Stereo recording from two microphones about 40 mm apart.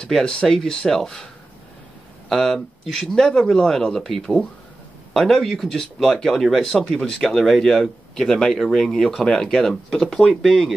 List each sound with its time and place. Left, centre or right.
0.2 s speech: centre